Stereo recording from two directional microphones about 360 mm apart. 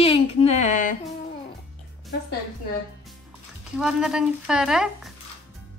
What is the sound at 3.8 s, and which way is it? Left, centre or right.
A woman's voice, centre.